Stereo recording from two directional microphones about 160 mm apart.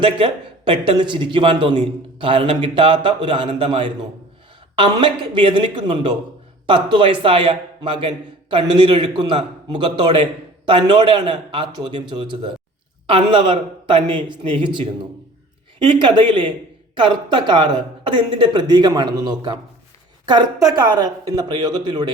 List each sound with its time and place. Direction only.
0.0 s speech: 35° right (ahead or behind)